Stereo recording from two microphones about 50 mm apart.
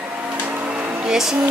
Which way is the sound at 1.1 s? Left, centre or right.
Centre.